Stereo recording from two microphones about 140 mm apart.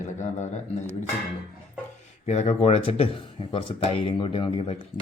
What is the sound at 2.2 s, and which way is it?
Speech, 50° left (ahead or behind).